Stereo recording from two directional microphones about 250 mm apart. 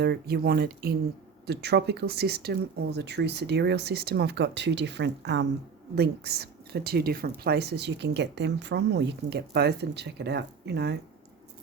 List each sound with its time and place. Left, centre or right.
0.0 s speech: right